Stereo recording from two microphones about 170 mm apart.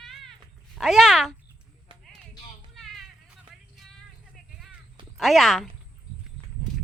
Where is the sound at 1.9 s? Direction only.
30° right (ahead or behind).